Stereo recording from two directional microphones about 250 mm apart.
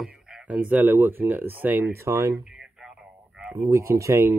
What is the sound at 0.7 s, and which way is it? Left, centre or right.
Speech, centre.